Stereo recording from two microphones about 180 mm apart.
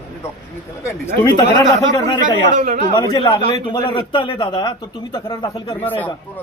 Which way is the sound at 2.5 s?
50° right (ahead or behind).